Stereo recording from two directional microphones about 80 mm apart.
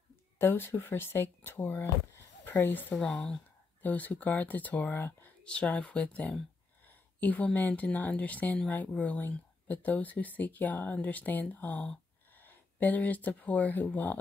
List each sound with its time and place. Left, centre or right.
0.4 s speech: left
3.0 s a woman's voice: centre